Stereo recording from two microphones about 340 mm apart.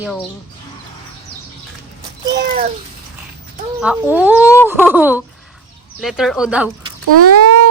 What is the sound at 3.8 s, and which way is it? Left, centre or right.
Speech, centre.